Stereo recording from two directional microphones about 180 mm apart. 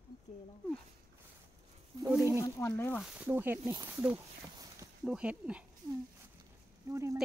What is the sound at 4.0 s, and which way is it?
Speech, 15° right (ahead or behind).